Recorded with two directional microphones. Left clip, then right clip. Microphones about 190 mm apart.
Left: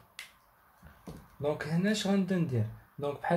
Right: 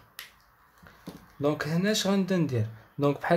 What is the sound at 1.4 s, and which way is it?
Speech, 25° right (ahead or behind).